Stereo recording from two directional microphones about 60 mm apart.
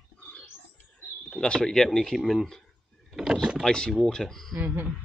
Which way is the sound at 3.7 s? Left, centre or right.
Centre.